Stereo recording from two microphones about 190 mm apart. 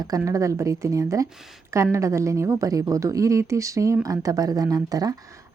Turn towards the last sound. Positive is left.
turn(degrees=-20)  # may be behind; listen again after turning